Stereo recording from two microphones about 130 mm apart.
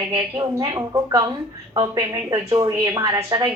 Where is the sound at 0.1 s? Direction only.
35° right (ahead or behind).